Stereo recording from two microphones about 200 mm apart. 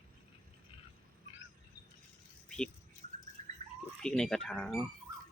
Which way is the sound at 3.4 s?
35° right (ahead or behind).